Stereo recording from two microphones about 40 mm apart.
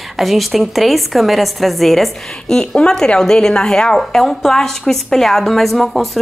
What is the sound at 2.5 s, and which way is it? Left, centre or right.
A woman's voice, left.